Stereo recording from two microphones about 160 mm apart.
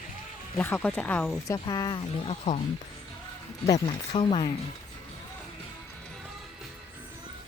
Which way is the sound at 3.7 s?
30° left (ahead or behind).